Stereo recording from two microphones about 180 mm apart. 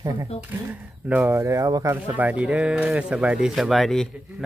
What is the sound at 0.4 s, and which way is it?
Speech, 10° right (ahead or behind).